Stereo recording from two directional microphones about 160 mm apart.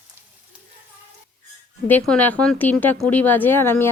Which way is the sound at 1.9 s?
10° left (ahead or behind).